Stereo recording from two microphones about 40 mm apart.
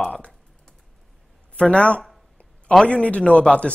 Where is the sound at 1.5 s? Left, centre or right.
Left.